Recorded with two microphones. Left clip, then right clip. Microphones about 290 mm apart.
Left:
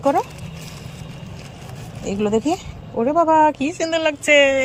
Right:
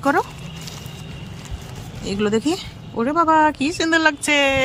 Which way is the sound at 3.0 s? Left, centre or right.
Right.